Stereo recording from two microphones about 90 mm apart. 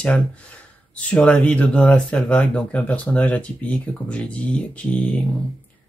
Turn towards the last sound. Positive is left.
turn(degrees=15)  # may be behind; listen again after turning